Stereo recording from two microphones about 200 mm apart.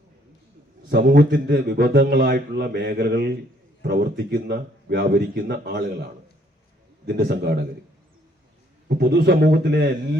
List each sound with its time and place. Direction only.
0.9 s a man's voice: 55° right (ahead or behind)
7.1 s a man's voice: 50° right (ahead or behind)
8.9 s a man's voice: 55° right (ahead or behind)